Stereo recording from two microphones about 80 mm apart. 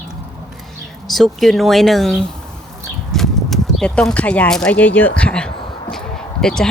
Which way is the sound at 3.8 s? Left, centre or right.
Centre.